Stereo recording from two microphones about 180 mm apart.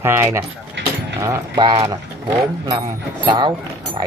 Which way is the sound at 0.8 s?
80° right.